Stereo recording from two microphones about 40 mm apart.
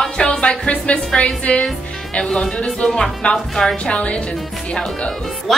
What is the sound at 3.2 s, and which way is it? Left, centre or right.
Speech, left.